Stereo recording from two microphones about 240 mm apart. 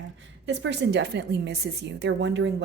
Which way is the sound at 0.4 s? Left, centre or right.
Right.